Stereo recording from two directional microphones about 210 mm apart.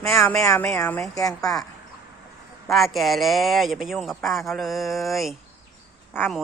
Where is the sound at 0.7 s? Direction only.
15° left (ahead or behind).